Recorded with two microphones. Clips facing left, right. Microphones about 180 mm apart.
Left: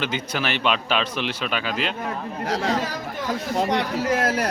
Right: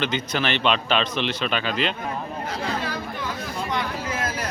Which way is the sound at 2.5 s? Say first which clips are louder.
Left 7 dB; 90° left.